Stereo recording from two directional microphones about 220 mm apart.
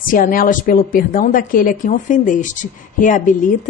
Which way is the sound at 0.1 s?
40° left (ahead or behind).